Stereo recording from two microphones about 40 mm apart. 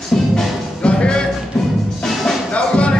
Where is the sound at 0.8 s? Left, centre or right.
Left.